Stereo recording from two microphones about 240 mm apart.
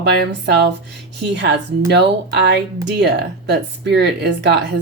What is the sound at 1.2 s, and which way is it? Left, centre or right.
Speech, right.